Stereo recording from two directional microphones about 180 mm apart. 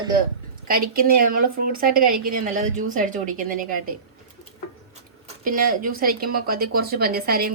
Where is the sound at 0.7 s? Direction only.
55° right (ahead or behind).